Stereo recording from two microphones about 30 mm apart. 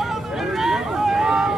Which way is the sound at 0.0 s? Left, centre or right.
Centre.